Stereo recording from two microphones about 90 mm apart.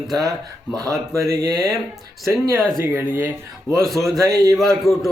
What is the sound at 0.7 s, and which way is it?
Speech, 40° right (ahead or behind).